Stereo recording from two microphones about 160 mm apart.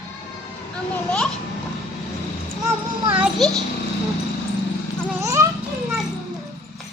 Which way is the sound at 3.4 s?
Centre (ahead or behind).